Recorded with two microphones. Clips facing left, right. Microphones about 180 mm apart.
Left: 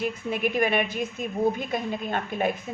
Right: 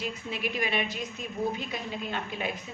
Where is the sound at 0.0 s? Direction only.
50° left (ahead or behind).